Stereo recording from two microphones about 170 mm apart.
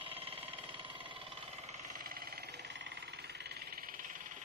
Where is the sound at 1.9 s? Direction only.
55° right (ahead or behind).